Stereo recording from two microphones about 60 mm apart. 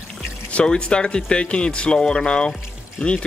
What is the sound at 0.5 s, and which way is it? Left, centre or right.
A man's voice, centre.